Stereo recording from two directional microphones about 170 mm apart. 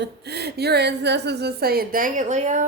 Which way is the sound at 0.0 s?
75° right (ahead or behind).